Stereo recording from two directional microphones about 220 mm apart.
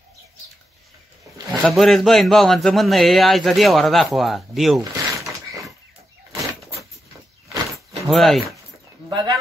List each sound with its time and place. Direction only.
1.6 s a man's voice: centre (ahead or behind)
8.1 s a man's voice: centre (ahead or behind)
9.1 s a sound: 20° right (ahead or behind)